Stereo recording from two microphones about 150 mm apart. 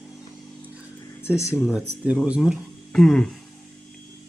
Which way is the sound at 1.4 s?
20° left (ahead or behind).